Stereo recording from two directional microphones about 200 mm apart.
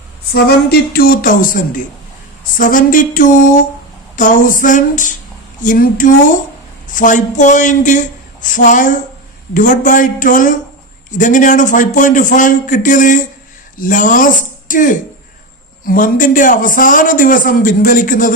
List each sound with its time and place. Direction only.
0.9 s a man's voice: 45° left (ahead or behind)